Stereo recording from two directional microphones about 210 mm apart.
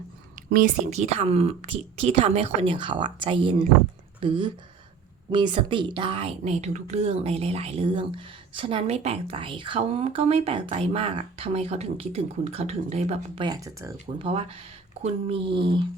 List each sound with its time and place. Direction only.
0.3 s a woman's voice: 40° right (ahead or behind); by 13.9 s 15° right (ahead or behind)
14.2 s a woman's voice: 25° right (ahead or behind)